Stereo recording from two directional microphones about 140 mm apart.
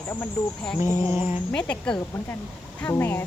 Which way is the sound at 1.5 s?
5° left (ahead or behind).